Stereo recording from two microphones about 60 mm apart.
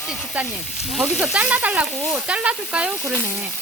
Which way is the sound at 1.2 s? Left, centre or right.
Right.